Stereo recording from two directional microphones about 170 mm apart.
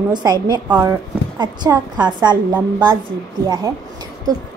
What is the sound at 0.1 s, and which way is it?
A woman's voice, 25° right (ahead or behind).